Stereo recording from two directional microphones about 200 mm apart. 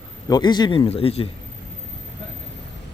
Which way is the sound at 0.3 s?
20° left (ahead or behind).